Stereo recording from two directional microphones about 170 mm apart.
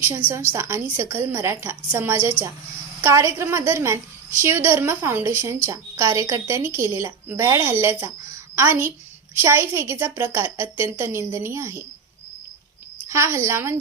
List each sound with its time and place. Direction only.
0.0 s a woman's voice: 10° right (ahead or behind)
13.1 s a woman's voice: 15° right (ahead or behind)